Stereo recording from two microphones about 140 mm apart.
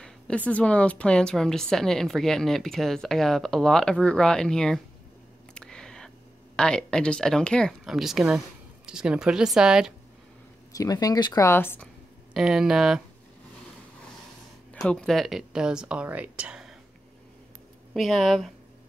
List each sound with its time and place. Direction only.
0.0 s speech: 10° left (ahead or behind)
5.5 s a sound: 5° left (ahead or behind)
8.8 s speech: 5° right (ahead or behind)
10.7 s speech: 25° left (ahead or behind)
12.4 s speech: 5° right (ahead or behind)
14.7 s speech: 5° left (ahead or behind)
17.9 s speech: centre (ahead or behind)